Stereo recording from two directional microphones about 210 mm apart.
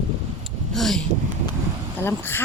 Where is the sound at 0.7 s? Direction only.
Centre (ahead or behind).